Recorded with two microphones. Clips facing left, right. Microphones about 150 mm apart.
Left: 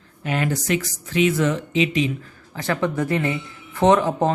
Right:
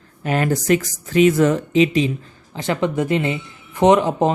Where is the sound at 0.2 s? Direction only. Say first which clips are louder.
Right 4 dB; 45° right (ahead or behind).